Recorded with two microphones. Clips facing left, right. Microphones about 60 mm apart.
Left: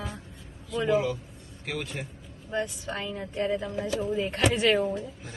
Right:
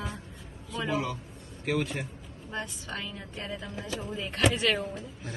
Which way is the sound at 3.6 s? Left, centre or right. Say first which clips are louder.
Left 7 dB; centre.